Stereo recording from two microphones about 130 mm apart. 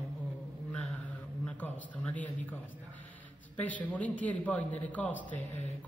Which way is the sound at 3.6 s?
10° left (ahead or behind).